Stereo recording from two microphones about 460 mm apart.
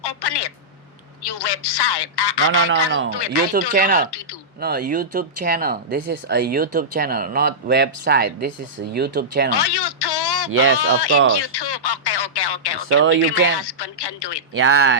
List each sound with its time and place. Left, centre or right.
0.0 s a sound: left
1.2 s a woman's voice: left
3.7 s speech: centre
9.5 s telephone: left
10.5 s speech: right
10.8 s a woman's voice: left
11.3 s radio: left
12.9 s speech: right
13.1 s a woman's voice: left
14.5 s speech: right